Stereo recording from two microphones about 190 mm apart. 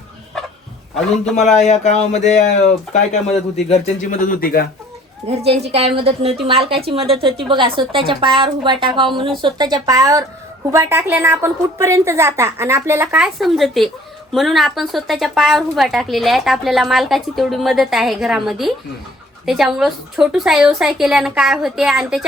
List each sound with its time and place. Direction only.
0.9 s a woman's voice: 5° left (ahead or behind)
1.4 s speech: 40° left (ahead or behind)
5.5 s a woman's voice: 30° right (ahead or behind); by 22.2 s 5° right (ahead or behind)